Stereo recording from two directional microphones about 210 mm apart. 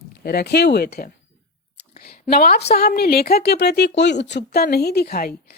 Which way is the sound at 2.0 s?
45° left (ahead or behind).